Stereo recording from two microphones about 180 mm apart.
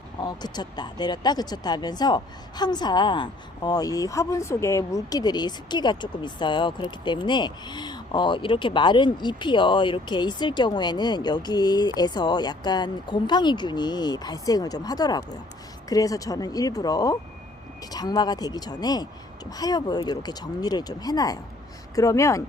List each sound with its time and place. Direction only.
0.2 s speech: 25° left (ahead or behind)